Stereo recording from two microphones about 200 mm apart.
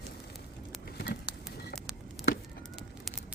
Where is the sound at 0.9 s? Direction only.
50° left (ahead or behind).